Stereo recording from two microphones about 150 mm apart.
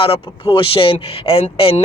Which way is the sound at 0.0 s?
40° left (ahead or behind).